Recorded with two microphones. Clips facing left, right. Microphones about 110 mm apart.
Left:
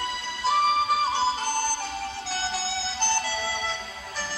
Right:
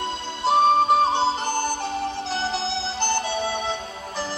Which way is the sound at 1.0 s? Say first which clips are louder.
Right 4 dB; 20° right (ahead or behind).